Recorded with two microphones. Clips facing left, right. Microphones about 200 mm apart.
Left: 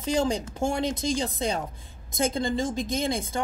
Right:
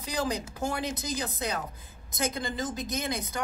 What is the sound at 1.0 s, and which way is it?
Speech, 25° left (ahead or behind).